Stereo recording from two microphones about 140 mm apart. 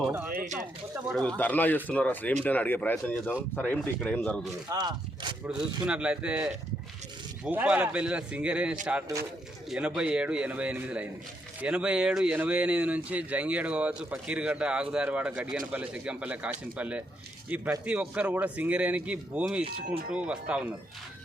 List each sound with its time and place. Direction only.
0.3 s a sound: 60° right (ahead or behind)
0.9 s speech: 15° right (ahead or behind)
1.4 s speech: 10° left (ahead or behind)
4.7 s speech: 30° right (ahead or behind)
5.8 s speech: 5° right (ahead or behind)